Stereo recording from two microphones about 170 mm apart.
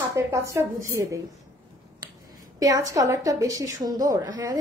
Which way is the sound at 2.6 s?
20° right (ahead or behind).